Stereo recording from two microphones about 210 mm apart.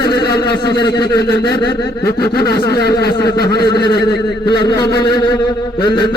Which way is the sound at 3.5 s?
20° left (ahead or behind).